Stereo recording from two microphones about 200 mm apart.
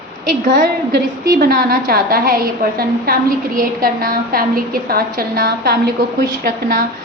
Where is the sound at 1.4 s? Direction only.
50° right (ahead or behind).